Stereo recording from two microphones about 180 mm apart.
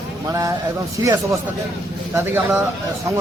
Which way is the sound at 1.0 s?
20° right (ahead or behind).